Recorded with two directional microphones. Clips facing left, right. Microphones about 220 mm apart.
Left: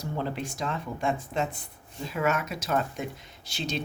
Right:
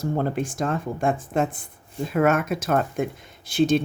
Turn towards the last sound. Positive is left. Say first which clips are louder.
# right 14 dB
turn(degrees=-50)  # may be behind; listen again after turning